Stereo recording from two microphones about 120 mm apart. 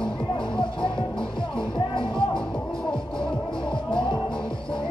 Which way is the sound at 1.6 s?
45° left (ahead or behind).